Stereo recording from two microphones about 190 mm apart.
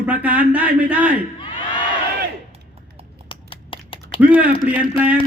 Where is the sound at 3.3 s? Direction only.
25° left (ahead or behind).